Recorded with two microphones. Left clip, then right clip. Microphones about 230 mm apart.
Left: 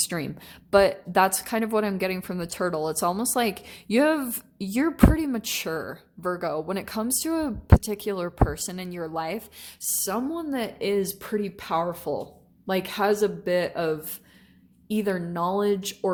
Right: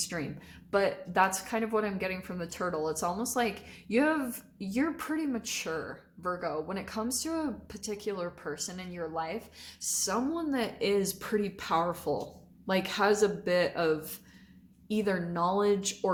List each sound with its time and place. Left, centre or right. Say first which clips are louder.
0.1 s a woman's voice: left 5 dB; left
10.1 s speech: left 4 dB; left